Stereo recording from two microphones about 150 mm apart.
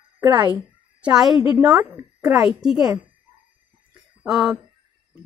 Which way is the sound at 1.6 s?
5° right (ahead or behind).